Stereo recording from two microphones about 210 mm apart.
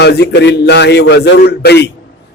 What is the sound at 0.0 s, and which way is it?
A man's voice, 50° left (ahead or behind).